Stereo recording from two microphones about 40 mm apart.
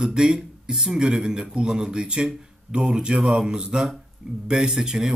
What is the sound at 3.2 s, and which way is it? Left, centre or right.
Speech, centre.